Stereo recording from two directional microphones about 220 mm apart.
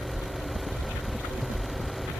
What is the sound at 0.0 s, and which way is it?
Vehicle, centre (ahead or behind).